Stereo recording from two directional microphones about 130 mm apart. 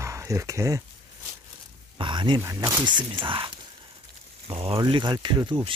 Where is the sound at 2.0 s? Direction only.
35° right (ahead or behind).